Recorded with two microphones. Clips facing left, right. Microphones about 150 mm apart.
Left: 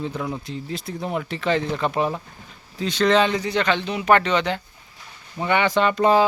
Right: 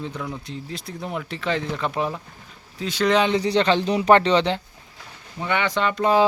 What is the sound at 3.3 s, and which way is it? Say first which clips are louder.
Speech: right 3 dB; 30° right (ahead or behind).